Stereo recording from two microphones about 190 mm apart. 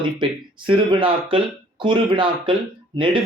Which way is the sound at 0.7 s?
25° right (ahead or behind).